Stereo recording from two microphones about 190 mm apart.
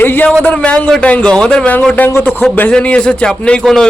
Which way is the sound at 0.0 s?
10° left (ahead or behind).